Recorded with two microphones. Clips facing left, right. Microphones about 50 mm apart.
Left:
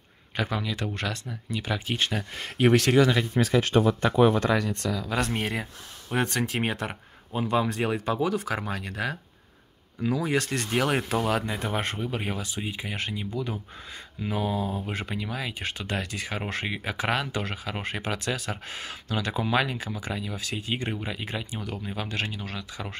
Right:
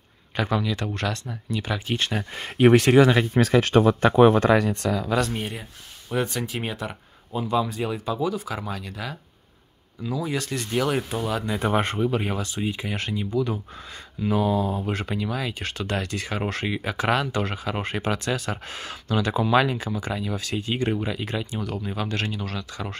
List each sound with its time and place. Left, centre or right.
0.4 s speech: centre
2.1 s speech: centre
3.0 s speech: right
3.3 s speech: right
4.0 s speech: right
5.4 s speech: left
6.1 s speech: left
8.5 s speech: left
11.6 s speech: centre